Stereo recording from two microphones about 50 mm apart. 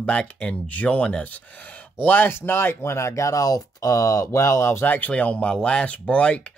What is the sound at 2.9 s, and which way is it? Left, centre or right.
Speech, left.